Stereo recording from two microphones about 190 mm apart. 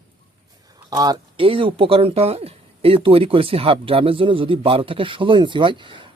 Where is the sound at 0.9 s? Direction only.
20° right (ahead or behind).